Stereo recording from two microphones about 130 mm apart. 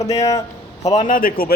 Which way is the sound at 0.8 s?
60° left (ahead or behind).